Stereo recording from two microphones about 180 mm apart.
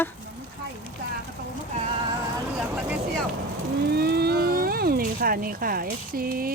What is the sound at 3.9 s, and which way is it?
Vehicle, 65° right (ahead or behind).